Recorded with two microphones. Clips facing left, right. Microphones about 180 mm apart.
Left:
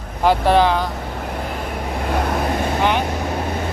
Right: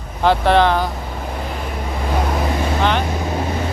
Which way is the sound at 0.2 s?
5° left (ahead or behind).